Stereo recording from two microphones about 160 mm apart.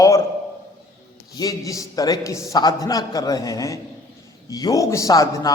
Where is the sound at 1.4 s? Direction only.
20° left (ahead or behind).